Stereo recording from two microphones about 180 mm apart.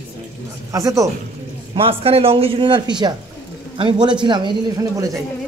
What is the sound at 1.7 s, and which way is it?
A man's voice, 30° right (ahead or behind).